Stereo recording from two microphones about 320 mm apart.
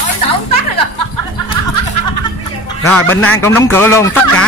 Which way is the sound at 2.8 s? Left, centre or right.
Centre.